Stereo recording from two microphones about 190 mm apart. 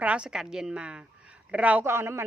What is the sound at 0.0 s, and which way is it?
A woman's voice, 5° right (ahead or behind).